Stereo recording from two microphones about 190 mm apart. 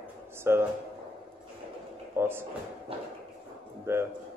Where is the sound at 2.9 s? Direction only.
30° right (ahead or behind).